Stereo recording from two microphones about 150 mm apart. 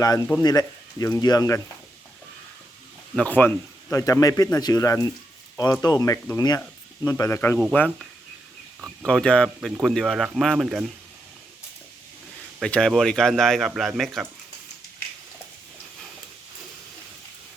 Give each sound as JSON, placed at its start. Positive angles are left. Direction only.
{"t": 0.4, "sound": "speech", "side_deg": 25}
{"t": 3.2, "sound": "speech", "side_deg": 10}
{"t": 9.0, "sound": "speech", "side_deg": 5}
{"t": 12.5, "sound": "speech", "side_deg": 5}